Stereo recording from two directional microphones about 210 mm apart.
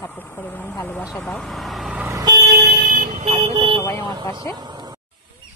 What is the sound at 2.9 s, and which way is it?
Vehicle, 40° right (ahead or behind).